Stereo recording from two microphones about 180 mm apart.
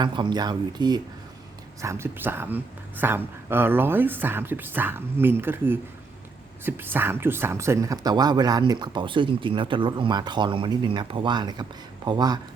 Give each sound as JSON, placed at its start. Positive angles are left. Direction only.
{"t": 0.0, "sound": "a woman's voice", "side_deg": -25}